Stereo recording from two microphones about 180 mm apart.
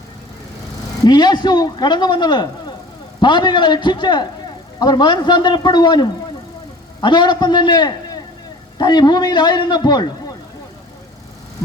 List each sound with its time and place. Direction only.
1.0 s a man's voice: 25° left (ahead or behind)